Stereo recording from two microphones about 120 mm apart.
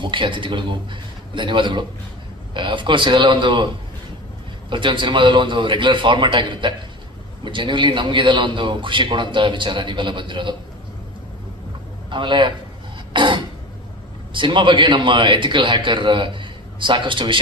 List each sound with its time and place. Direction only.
0.0 s a man's voice: 45° right (ahead or behind)
4.7 s a man's voice: 45° right (ahead or behind)
12.1 s a man's voice: 40° right (ahead or behind)
13.1 s a sound: 40° right (ahead or behind)
14.3 s a man's voice: 45° right (ahead or behind)